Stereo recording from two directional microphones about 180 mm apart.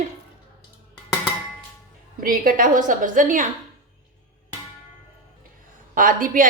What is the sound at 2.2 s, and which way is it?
A woman's voice, 50° right (ahead or behind).